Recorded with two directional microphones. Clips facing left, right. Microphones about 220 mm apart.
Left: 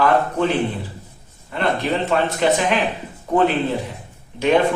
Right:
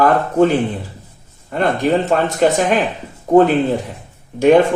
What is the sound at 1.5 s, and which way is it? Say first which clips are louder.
Speech: right 5 dB; 45° right (ahead or behind).